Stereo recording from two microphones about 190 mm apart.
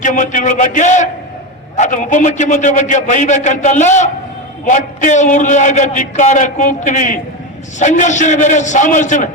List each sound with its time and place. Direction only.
0.0 s a man's voice: 40° left (ahead or behind)